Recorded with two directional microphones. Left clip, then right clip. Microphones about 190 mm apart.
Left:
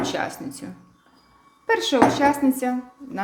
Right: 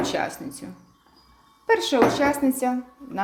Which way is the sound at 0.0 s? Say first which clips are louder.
Even; 5° right (ahead or behind).